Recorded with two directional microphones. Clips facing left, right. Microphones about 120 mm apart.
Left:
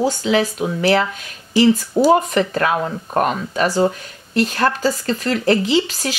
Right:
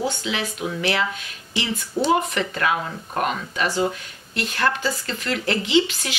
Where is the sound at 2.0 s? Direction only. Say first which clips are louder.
Left 6 dB; 40° left (ahead or behind).